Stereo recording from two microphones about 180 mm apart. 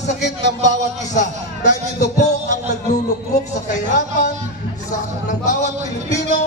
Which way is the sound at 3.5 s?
45° left (ahead or behind).